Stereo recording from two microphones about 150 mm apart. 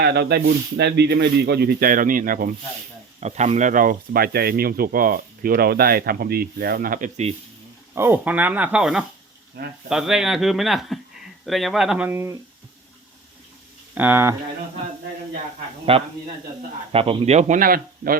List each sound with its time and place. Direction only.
0.0 s speech: 90° right; by 2.5 s 70° right (ahead or behind)
3.2 s speech: 50° right (ahead or behind); by 7.1 s 65° right (ahead or behind)
7.9 s speech: 15° right (ahead or behind)
9.6 s speech: 90° right
9.9 s speech: 5° right (ahead or behind)
13.9 s speech: 15° right (ahead or behind)
15.9 s speech: 40° right (ahead or behind)
17.6 s speech: 70° right (ahead or behind)